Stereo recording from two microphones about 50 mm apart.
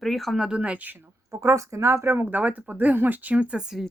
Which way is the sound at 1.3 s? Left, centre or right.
Right.